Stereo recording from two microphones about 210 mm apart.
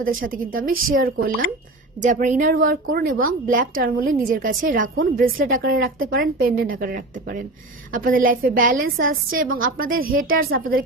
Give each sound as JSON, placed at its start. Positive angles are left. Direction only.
{"t": 0.0, "sound": "a woman's voice", "side_deg": -40}